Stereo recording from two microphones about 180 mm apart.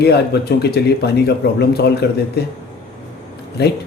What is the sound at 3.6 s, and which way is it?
Speech, 65° left (ahead or behind).